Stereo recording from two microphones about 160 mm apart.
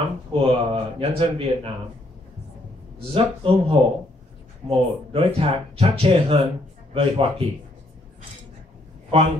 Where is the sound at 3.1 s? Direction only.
35° right (ahead or behind).